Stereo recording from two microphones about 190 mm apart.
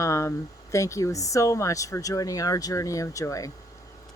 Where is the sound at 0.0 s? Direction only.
15° left (ahead or behind).